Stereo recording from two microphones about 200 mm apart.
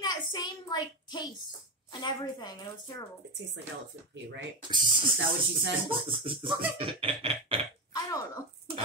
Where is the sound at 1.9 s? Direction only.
20° left (ahead or behind).